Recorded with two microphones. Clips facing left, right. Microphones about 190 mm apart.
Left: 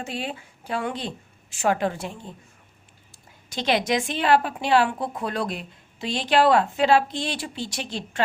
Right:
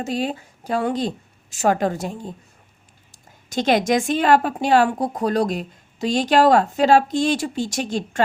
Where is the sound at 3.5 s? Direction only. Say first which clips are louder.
Right 5 dB; 45° right (ahead or behind).